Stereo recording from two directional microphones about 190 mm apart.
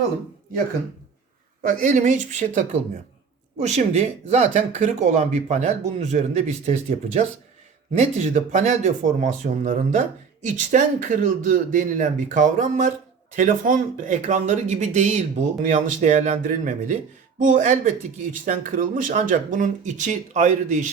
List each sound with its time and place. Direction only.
1.6 s speech: 45° right (ahead or behind)